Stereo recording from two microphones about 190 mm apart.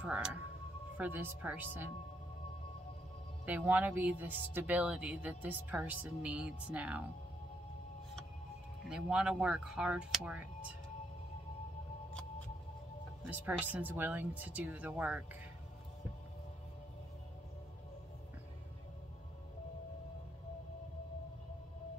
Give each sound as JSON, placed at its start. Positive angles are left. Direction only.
{"t": 0.0, "sound": "music", "side_deg": -5}
{"t": 0.9, "sound": "speech", "side_deg": -10}
{"t": 3.4, "sound": "speech", "side_deg": -10}
{"t": 8.8, "sound": "speech", "side_deg": -5}
{"t": 13.3, "sound": "speech", "side_deg": -10}